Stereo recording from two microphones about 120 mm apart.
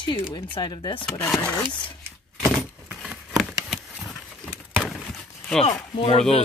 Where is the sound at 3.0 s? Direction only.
5° right (ahead or behind).